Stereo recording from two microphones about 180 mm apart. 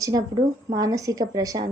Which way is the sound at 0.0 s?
20° right (ahead or behind).